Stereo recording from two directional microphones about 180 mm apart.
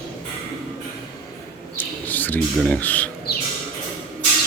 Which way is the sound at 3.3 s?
60° left (ahead or behind).